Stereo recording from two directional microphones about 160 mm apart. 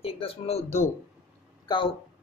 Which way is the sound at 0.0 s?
35° left (ahead or behind).